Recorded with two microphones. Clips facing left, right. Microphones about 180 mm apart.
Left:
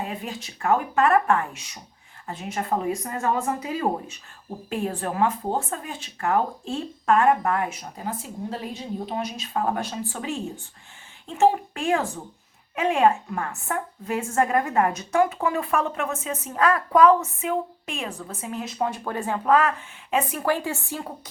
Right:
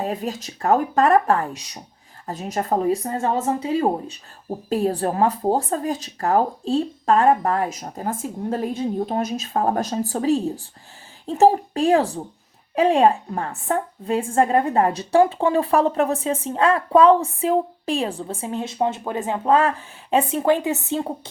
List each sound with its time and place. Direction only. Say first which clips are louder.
0.0 s a woman's voice: right 6 dB; 40° right (ahead or behind); by 21.1 s 25° right (ahead or behind)